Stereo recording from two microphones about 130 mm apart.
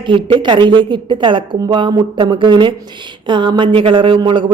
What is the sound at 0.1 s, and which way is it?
Speech, 40° right (ahead or behind).